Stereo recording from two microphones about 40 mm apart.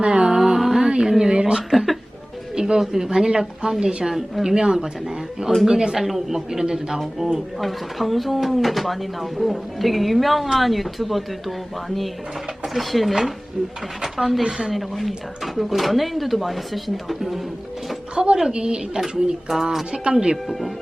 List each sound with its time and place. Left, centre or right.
0.0 s music: centre
1.1 s speech: centre
1.7 s a sound: centre
2.6 s a woman's voice: centre
7.3 s speech: centre
18.1 s a woman's voice: right
20.3 s speech: centre